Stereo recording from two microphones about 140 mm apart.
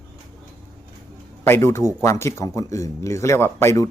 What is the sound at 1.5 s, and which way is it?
A man's voice, 15° left (ahead or behind).